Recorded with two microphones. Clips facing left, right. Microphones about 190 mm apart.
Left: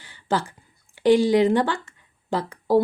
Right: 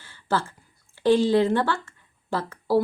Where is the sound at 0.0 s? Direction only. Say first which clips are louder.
Left 1 dB; 15° left (ahead or behind).